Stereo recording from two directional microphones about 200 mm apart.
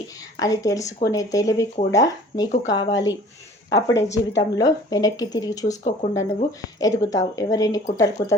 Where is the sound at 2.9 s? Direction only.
65° left (ahead or behind).